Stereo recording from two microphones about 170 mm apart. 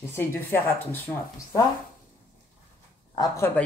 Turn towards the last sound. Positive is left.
turn(degrees=25)  # may be behind; listen again after turning